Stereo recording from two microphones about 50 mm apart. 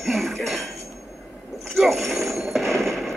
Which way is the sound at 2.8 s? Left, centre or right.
Centre.